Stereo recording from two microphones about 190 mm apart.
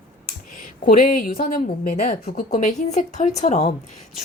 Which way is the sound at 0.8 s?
50° left (ahead or behind).